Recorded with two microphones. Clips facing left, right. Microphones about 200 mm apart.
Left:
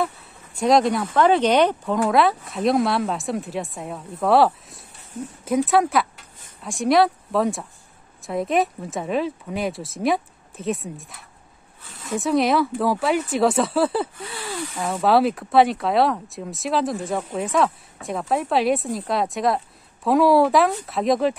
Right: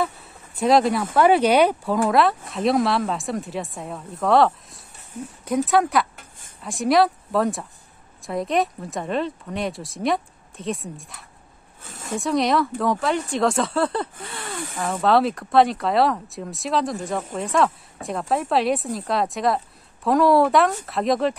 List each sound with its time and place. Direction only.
0.6 s a woman's voice: centre (ahead or behind)
11.8 s a sound: 45° right (ahead or behind)
12.2 s a woman's voice: centre (ahead or behind)